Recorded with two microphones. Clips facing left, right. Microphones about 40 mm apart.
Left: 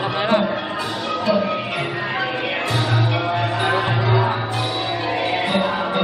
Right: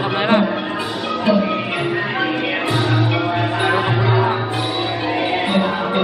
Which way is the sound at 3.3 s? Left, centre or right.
Centre.